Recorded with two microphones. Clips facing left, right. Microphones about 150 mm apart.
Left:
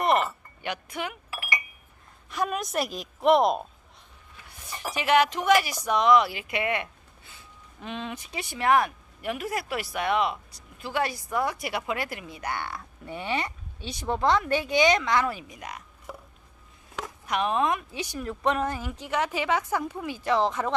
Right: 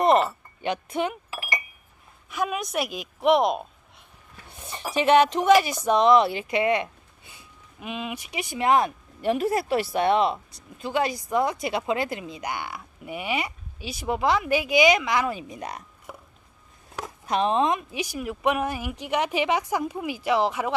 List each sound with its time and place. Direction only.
0.6 s speech: 25° right (ahead or behind)
2.2 s a woman's voice: centre (ahead or behind)
4.5 s speech: 25° right (ahead or behind)
17.0 s speech: 30° right (ahead or behind); by 20.7 s 10° right (ahead or behind)